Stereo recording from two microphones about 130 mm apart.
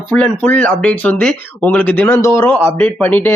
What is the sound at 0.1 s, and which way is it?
Speech, 10° left (ahead or behind).